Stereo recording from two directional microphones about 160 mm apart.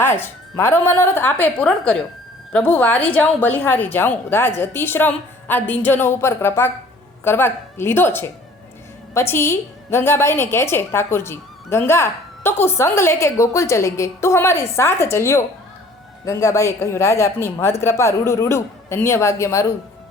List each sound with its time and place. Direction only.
0.0 s a woman's voice: 15° left (ahead or behind)